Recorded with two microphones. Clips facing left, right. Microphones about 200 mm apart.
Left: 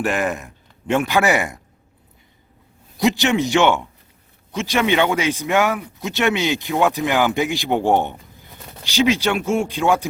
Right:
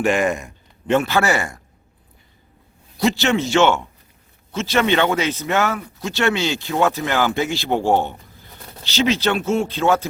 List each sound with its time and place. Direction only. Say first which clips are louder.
0.0 s speech: right 3 dB; centre (ahead or behind)
3.0 s speech: left 1 dB; 15° left (ahead or behind)